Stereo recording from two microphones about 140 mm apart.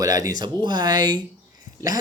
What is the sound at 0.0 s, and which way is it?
A man's voice, 25° right (ahead or behind).